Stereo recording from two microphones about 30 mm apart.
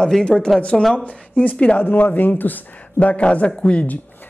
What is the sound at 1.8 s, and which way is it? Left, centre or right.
Speech, left.